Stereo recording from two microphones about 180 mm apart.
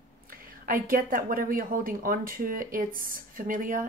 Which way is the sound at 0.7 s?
50° right (ahead or behind).